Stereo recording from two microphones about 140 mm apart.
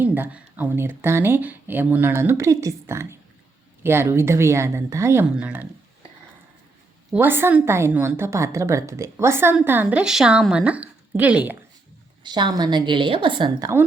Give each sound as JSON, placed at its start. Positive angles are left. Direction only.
{"t": 0.0, "sound": "a woman's voice", "side_deg": -10}
{"t": 7.1, "sound": "a woman's voice", "side_deg": -15}
{"t": 12.2, "sound": "a woman's voice", "side_deg": -30}